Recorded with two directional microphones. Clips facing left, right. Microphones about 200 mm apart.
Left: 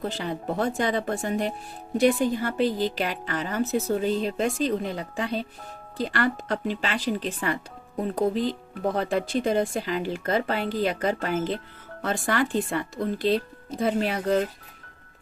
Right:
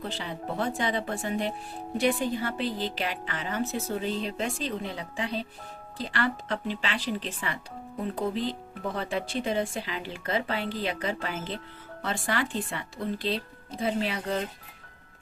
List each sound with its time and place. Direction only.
0.0 s a woman's voice: 45° left (ahead or behind)
9.0 s a woman's voice: 45° left (ahead or behind)